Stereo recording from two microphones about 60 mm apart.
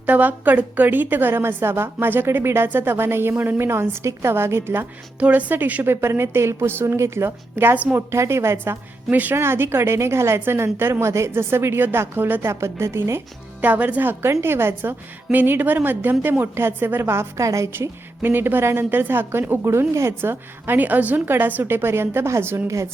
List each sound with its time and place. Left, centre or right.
0.0 s a woman's voice: right
5.2 s a woman's voice: right
5.8 s a woman's voice: right
9.0 s a woman's voice: right
9.3 s a woman's voice: right
11.0 s a woman's voice: right
11.3 s a woman's voice: right
13.6 s a woman's voice: right
17.7 s a woman's voice: right
19.9 s a woman's voice: right
20.7 s a woman's voice: right